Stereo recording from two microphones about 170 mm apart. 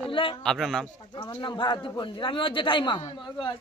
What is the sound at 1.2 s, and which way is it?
Speech, 30° left (ahead or behind).